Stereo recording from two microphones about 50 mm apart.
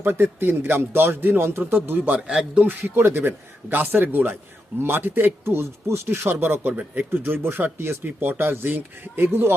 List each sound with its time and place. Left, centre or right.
0.0 s speech: right
6.7 s speech: right
7.1 s speech: right